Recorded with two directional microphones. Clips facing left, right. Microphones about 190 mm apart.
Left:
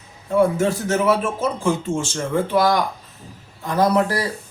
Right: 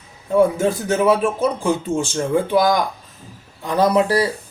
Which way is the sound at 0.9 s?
15° right (ahead or behind).